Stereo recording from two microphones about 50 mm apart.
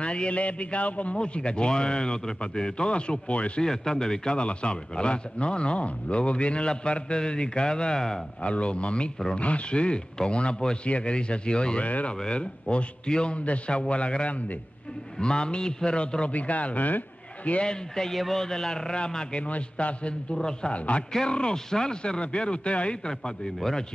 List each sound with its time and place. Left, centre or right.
0.0 s a man's voice: left
3.6 s a man's voice: centre
8.4 s a man's voice: left
17.5 s speech: centre
18.1 s speech: centre
20.7 s a man's voice: left
21.1 s speech: centre